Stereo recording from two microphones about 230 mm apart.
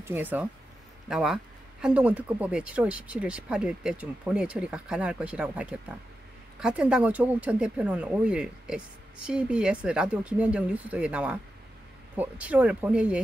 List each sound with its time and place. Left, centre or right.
0.0 s speech: centre